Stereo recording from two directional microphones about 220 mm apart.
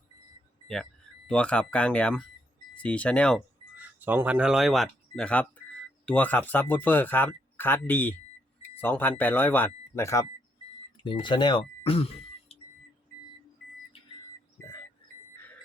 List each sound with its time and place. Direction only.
1.3 s speech: 5° left (ahead or behind)
3.8 s speech: 10° right (ahead or behind); by 12.0 s 25° left (ahead or behind)